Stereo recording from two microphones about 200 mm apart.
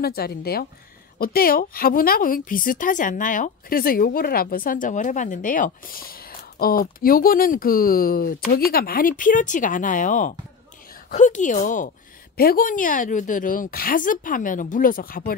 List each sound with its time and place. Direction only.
0.0 s a woman's voice: 50° left (ahead or behind)